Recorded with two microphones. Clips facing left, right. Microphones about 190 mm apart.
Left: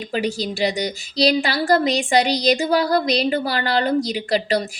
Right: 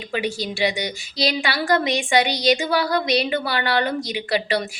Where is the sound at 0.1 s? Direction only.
40° left (ahead or behind).